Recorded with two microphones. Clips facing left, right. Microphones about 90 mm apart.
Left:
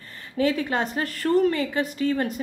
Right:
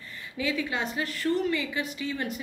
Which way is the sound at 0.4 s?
45° left (ahead or behind).